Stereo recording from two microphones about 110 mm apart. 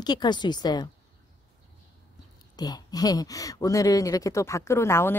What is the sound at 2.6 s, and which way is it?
Speech, 35° left (ahead or behind).